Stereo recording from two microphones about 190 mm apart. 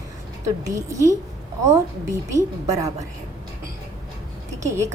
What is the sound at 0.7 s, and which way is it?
A woman's voice, 15° right (ahead or behind).